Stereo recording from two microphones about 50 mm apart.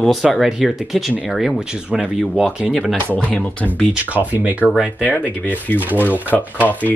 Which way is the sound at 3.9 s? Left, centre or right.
Right.